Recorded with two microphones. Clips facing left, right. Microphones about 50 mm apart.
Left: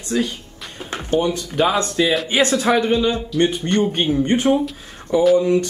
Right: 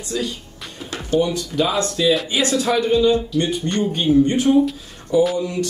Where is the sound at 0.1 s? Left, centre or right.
Left.